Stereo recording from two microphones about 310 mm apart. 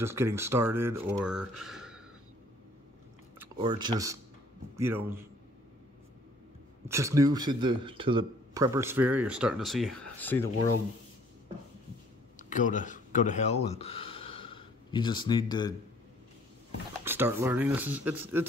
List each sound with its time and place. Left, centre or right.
0.0 s speech: centre
3.3 s a man's voice: centre
6.9 s speech: centre
12.4 s speech: left
17.0 s speech: centre